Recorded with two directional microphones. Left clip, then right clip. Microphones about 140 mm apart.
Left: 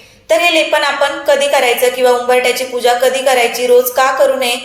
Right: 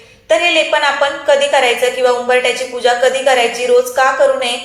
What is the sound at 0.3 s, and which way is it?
A woman's voice, 20° left (ahead or behind).